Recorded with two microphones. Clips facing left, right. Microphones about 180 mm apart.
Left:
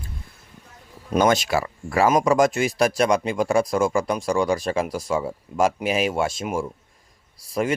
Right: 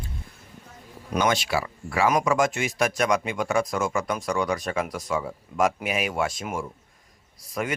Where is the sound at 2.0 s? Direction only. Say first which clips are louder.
Left 4 dB; 30° left (ahead or behind).